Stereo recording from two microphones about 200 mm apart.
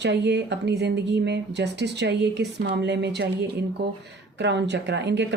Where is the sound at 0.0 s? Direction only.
60° right (ahead or behind).